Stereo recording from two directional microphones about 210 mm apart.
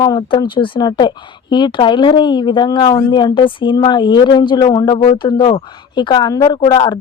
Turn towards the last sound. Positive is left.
turn(degrees=20)  # may be behind; listen again after turning